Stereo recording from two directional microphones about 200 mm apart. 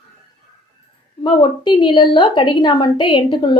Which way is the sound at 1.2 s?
25° left (ahead or behind).